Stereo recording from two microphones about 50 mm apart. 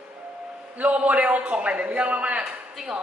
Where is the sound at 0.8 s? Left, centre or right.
Right.